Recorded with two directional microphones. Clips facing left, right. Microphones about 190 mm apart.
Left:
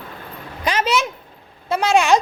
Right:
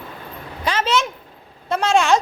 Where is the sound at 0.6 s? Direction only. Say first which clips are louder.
Left 1 dB; 15° left (ahead or behind).